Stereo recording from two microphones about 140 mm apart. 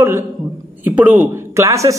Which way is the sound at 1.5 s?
20° right (ahead or behind).